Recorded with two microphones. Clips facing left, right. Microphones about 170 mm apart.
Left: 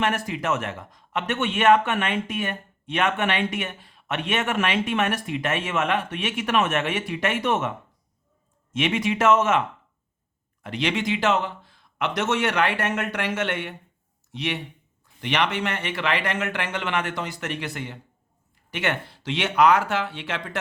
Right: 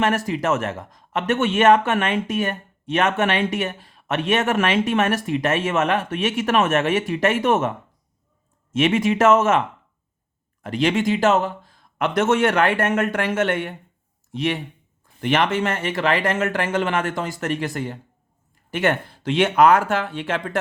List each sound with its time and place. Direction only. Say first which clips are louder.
0.3 s speech: right 5 dB; 45° right (ahead or behind)
8.7 s speech: right 5 dB; 45° right (ahead or behind)
10.6 s speech: right 6 dB; 45° right (ahead or behind)